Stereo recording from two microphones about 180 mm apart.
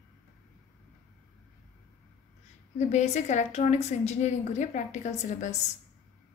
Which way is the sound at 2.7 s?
40° left (ahead or behind).